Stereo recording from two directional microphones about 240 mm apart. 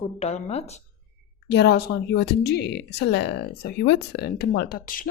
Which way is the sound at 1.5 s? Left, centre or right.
Left.